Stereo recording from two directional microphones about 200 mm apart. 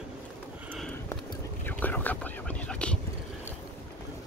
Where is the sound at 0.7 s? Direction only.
Centre (ahead or behind).